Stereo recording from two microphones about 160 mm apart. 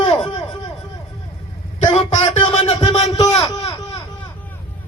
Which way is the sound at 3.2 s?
25° left (ahead or behind).